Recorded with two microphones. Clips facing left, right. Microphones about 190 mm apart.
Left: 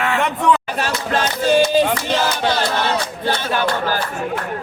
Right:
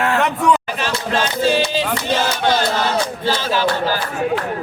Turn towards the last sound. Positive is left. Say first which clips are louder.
# right 1 dB
turn(degrees=55)  # may be behind; listen again after turning